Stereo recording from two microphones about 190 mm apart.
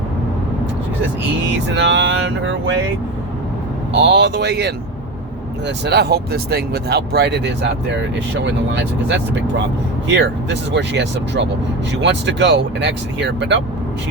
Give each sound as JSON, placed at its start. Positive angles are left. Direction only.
{"t": 1.5, "sound": "speech", "side_deg": -65}
{"t": 4.0, "sound": "speech", "side_deg": -65}